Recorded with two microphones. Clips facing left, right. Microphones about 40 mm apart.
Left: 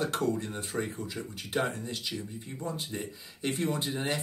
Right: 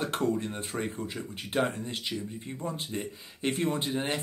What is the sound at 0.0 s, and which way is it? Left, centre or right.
Speech, right.